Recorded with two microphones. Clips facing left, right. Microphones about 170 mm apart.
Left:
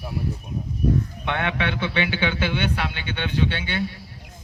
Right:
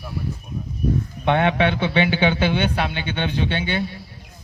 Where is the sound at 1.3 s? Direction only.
25° right (ahead or behind).